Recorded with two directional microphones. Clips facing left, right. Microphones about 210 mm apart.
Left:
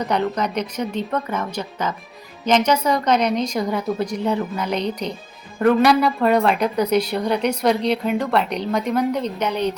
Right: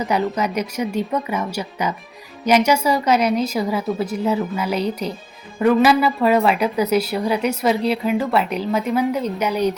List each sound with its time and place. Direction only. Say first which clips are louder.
0.0 s a woman's voice: right 1 dB; 5° right (ahead or behind)